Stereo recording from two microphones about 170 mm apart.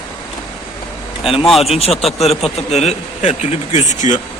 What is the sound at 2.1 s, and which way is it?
A man's voice, 40° left (ahead or behind).